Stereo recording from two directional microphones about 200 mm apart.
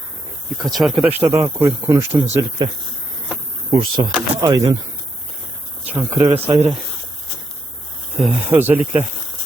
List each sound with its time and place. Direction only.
0.6 s speech: centre (ahead or behind); by 2.6 s 15° right (ahead or behind)
3.7 s speech: 20° right (ahead or behind)
5.8 s a sound: 10° right (ahead or behind)
6.2 s speech: 15° right (ahead or behind)
8.2 s speech: 10° right (ahead or behind)